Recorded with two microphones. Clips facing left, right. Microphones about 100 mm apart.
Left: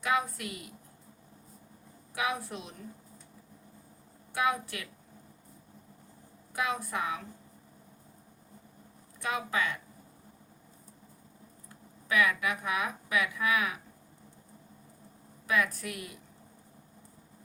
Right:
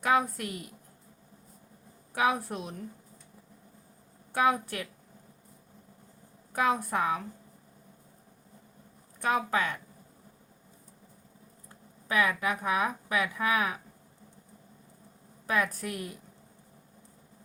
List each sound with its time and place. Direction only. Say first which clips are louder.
0.0 s a woman's voice: right 4 dB; 45° right (ahead or behind)
2.1 s a woman's voice: right 5 dB; 45° right (ahead or behind)
4.3 s a woman's voice: right 4 dB; 45° right (ahead or behind)
6.5 s a woman's voice: right 5 dB; 45° right (ahead or behind)
9.2 s a woman's voice: right 4 dB; 45° right (ahead or behind)
12.0 s speech: right 1 dB; 35° right (ahead or behind)
15.4 s speech: right 1 dB; 40° right (ahead or behind)